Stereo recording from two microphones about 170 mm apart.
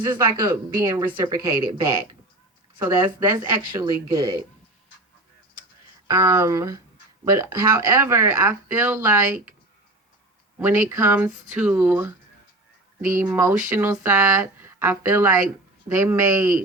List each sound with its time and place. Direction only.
0.0 s speech: 20° right (ahead or behind)
6.1 s speech: 20° right (ahead or behind)
10.6 s speech: 15° right (ahead or behind)
13.1 s speech: 15° right (ahead or behind)